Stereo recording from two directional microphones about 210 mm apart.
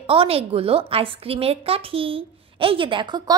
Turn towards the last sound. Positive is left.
turn(degrees=-25)  # may be behind; listen again after turning